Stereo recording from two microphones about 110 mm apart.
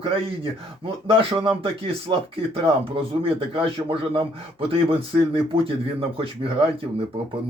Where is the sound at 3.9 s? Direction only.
55° right (ahead or behind).